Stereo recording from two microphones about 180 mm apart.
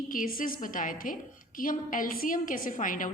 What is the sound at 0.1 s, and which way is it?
A woman's voice, 50° left (ahead or behind).